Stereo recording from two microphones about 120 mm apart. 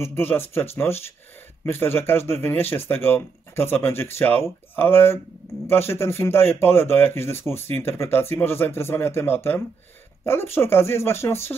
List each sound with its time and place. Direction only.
0.0 s speech: 20° left (ahead or behind)